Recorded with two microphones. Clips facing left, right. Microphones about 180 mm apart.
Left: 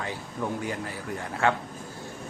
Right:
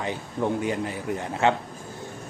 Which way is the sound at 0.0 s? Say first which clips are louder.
Right 5 dB; 20° right (ahead or behind).